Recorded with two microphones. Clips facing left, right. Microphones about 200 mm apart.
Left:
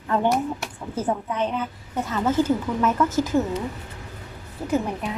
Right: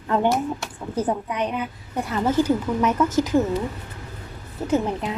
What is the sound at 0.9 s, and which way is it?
A woman's voice, 15° right (ahead or behind).